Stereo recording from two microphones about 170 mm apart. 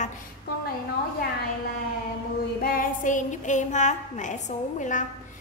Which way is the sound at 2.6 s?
55° left (ahead or behind).